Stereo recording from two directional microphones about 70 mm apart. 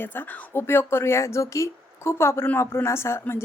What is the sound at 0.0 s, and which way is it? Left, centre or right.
A woman's voice, left.